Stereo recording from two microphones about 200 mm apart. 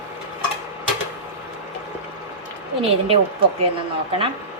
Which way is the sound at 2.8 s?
30° right (ahead or behind).